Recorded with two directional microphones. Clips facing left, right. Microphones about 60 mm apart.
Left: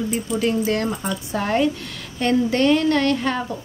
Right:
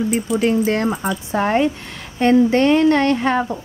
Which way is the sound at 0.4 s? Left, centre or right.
Right.